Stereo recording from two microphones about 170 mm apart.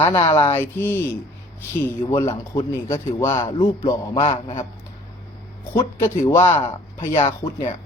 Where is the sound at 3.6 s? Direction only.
30° left (ahead or behind).